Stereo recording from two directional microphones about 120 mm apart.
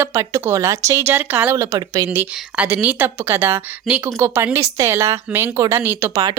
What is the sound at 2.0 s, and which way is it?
Speech, 10° right (ahead or behind).